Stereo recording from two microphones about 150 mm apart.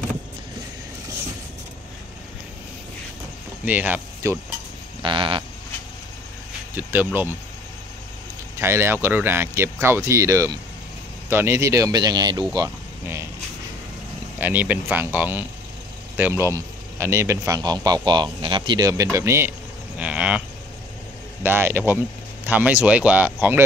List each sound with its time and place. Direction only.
3.6 s speech: 10° right (ahead or behind)
5.0 s sheep: 35° right (ahead or behind)
6.7 s speech: 10° right (ahead or behind)
8.5 s speech: 15° right (ahead or behind)
14.4 s speech: 10° right (ahead or behind)
20.0 s livestock: 10° right (ahead or behind)
21.4 s speech: 15° right (ahead or behind)